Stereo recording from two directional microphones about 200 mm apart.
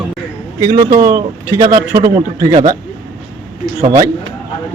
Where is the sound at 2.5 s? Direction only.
35° right (ahead or behind).